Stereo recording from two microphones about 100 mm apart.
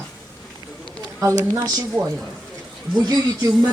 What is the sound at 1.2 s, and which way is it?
Speech, 35° right (ahead or behind).